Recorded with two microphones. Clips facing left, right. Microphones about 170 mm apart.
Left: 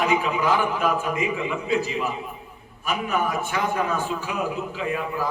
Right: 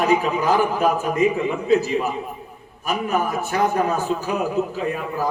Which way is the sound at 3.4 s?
40° right (ahead or behind).